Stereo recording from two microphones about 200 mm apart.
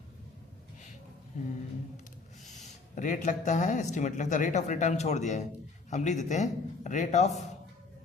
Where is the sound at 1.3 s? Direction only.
35° left (ahead or behind).